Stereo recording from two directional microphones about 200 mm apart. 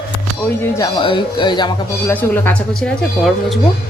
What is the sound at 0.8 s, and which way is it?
Speech, 25° left (ahead or behind).